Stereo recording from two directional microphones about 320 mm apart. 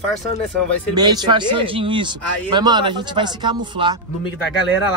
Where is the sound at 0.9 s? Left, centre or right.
Centre.